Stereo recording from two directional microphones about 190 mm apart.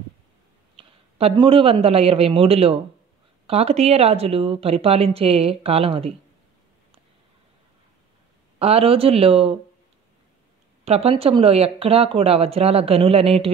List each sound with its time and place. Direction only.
0.7 s a man's voice: 30° right (ahead or behind)
8.5 s speech: 30° right (ahead or behind)
10.9 s speech: 30° right (ahead or behind)